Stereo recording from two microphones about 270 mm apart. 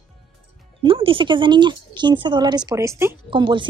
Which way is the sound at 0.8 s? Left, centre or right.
Centre.